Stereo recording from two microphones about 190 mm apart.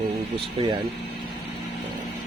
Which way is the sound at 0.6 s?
30° right (ahead or behind).